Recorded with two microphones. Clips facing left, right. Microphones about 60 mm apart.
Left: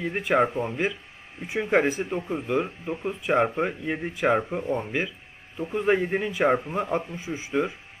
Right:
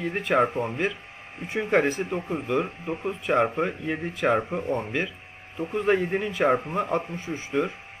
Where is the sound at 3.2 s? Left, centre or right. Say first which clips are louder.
Even; centre.